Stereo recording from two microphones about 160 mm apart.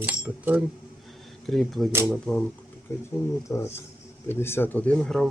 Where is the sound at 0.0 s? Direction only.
10° right (ahead or behind); by 2.4 s 5° left (ahead or behind).